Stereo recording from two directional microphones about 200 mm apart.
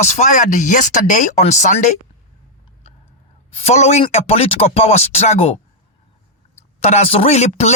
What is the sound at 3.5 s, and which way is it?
Speech, 30° left (ahead or behind).